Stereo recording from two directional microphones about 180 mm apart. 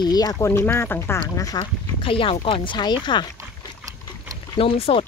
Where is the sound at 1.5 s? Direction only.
30° left (ahead or behind).